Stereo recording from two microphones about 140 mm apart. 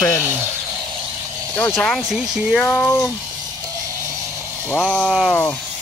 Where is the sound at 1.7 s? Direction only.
Centre (ahead or behind).